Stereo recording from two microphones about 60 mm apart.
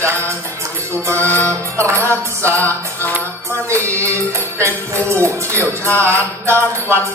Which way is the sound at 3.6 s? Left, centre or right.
Right.